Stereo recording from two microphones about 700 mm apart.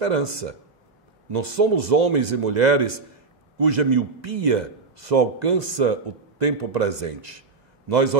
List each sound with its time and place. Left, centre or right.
0.0 s a man's voice: right
7.9 s a man's voice: right